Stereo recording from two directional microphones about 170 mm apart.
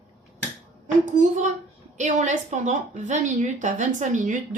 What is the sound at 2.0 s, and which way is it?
A woman's voice, 45° right (ahead or behind).